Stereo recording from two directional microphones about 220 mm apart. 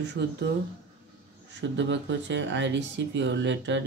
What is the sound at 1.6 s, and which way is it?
Speech, 55° right (ahead or behind).